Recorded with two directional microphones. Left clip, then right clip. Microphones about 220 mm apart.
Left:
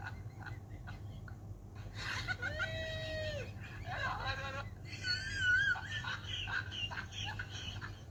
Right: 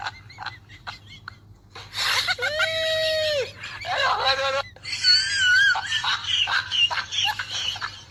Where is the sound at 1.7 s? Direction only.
45° right (ahead or behind).